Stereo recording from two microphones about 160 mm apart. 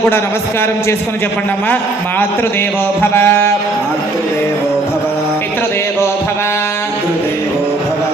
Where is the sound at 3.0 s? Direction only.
15° left (ahead or behind).